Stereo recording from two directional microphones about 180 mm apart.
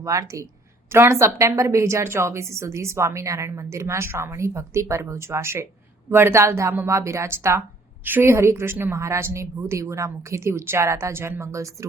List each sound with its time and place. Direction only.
0.0 s a woman's voice: 15° right (ahead or behind)